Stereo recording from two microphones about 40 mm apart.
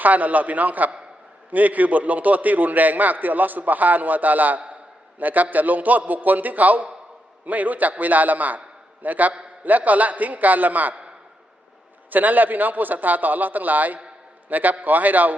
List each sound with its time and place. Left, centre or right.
0.0 s a man's voice: right
12.1 s a man's voice: right